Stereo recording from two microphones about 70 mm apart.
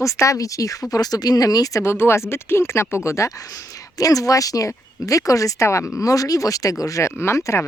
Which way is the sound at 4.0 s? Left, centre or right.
Left.